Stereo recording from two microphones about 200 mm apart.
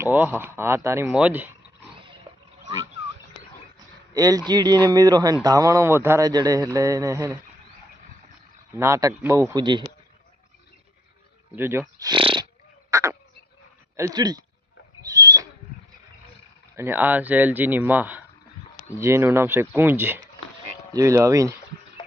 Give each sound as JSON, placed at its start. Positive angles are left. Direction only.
{"t": 0.0, "sound": "speech", "side_deg": -10}
{"t": 4.1, "sound": "speech", "side_deg": -20}
{"t": 8.7, "sound": "speech", "side_deg": -15}
{"t": 11.5, "sound": "speech", "side_deg": -10}
{"t": 12.9, "sound": "duck", "side_deg": -15}
{"t": 13.9, "sound": "speech", "side_deg": -15}
{"t": 15.0, "sound": "owl", "side_deg": -15}
{"t": 16.7, "sound": "speech", "side_deg": -10}